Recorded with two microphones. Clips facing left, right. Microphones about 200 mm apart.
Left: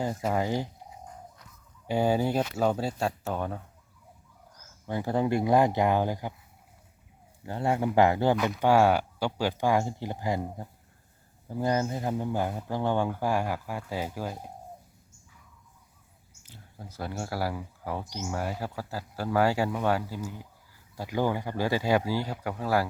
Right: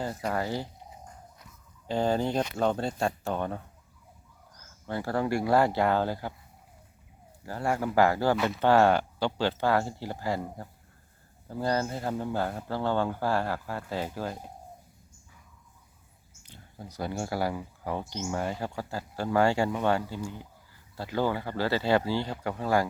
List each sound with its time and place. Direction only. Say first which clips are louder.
0.3 s speech: left 3 dB; 15° left (ahead or behind)
1.9 s speech: left 1 dB; 10° left (ahead or behind)
4.6 s speech: left 1 dB; 15° left (ahead or behind)
7.4 s speech: left 2 dB; 20° left (ahead or behind)
16.4 s speech: right 2 dB; 5° left (ahead or behind)